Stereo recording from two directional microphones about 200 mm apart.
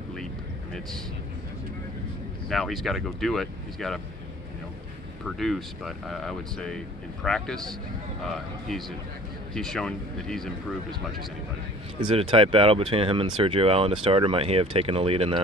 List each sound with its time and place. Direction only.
2.5 s speech: centre (ahead or behind)
5.2 s speech: centre (ahead or behind)
8.6 s speech: centre (ahead or behind)
12.1 s speech: 25° right (ahead or behind)